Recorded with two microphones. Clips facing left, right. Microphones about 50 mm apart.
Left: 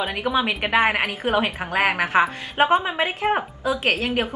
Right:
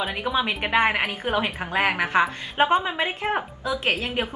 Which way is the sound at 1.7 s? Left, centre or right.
Centre.